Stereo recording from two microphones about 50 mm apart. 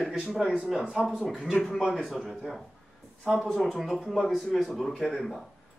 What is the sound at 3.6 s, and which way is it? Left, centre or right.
A man's voice, centre.